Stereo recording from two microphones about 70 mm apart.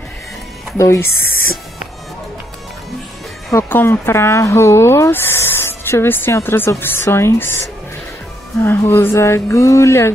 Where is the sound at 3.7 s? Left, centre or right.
Left.